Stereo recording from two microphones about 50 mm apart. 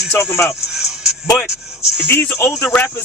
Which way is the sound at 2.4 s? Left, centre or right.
Left.